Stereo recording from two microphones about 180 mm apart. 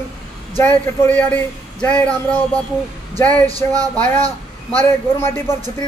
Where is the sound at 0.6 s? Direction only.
10° left (ahead or behind).